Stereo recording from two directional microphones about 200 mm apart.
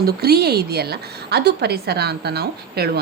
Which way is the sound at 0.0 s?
50° right (ahead or behind).